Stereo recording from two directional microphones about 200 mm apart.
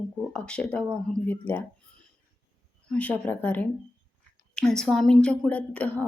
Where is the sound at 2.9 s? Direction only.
5° left (ahead or behind).